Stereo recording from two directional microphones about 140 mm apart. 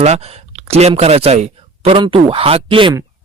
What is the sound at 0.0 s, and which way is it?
Speech, 50° right (ahead or behind).